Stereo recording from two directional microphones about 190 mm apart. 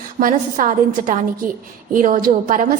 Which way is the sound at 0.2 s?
45° right (ahead or behind).